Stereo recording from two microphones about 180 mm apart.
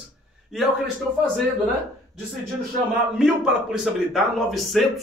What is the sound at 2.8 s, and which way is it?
Speech, 45° right (ahead or behind).